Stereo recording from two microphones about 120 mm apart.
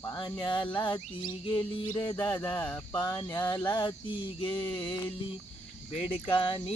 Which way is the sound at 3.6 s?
40° left (ahead or behind).